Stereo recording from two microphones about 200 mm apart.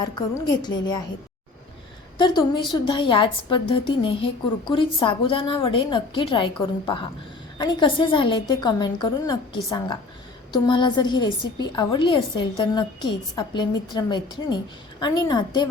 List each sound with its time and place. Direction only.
0.0 s a woman's voice: 20° left (ahead or behind)
2.1 s a woman's voice: 25° left (ahead or behind)